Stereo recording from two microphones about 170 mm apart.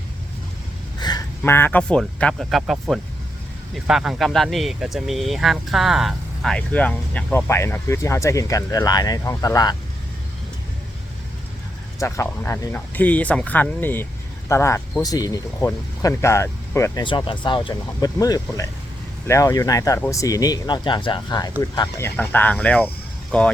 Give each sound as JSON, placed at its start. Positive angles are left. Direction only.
{"t": 0.9, "sound": "a sound", "side_deg": 25}
{"t": 1.5, "sound": "speech", "side_deg": 15}
{"t": 11.9, "sound": "speech", "side_deg": 15}
{"t": 17.0, "sound": "speech", "side_deg": 30}